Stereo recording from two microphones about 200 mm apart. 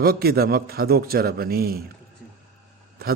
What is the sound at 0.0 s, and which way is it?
A man's voice, 50° right (ahead or behind).